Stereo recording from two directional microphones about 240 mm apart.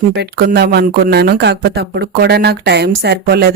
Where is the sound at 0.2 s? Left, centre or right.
Right.